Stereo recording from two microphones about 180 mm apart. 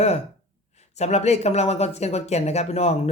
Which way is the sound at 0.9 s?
40° left (ahead or behind).